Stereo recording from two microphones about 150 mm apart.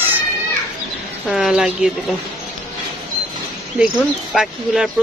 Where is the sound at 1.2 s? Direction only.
5° right (ahead or behind).